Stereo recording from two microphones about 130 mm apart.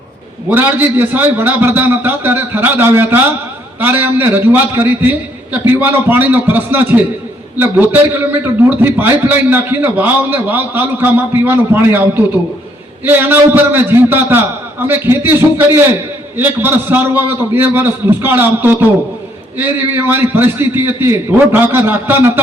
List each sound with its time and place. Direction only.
0.5 s a man's voice: 15° right (ahead or behind)